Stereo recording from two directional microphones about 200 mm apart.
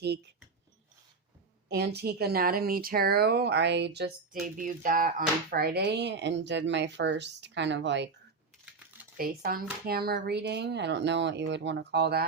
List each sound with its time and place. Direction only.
1.7 s speech: 55° right (ahead or behind)
9.1 s speech: 45° right (ahead or behind)